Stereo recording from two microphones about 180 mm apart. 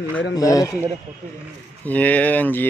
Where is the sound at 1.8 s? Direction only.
10° left (ahead or behind).